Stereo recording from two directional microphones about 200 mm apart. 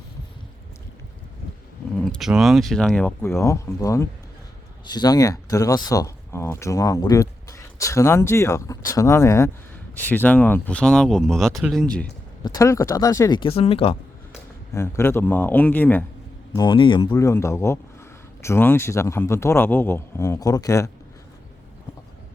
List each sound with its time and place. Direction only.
2.0 s speech: centre (ahead or behind)
12.4 s speech: 20° left (ahead or behind)
14.7 s speech: 15° left (ahead or behind)
16.6 s speech: 25° left (ahead or behind)